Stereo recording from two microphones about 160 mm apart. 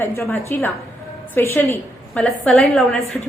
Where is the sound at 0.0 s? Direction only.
15° left (ahead or behind).